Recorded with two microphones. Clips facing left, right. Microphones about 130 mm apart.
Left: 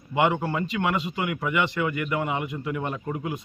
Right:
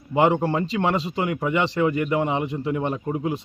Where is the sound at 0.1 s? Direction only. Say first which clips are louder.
Right 4 dB; 35° right (ahead or behind).